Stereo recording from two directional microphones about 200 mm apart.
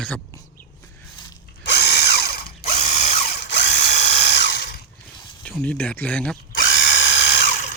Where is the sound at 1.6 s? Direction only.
55° left (ahead or behind).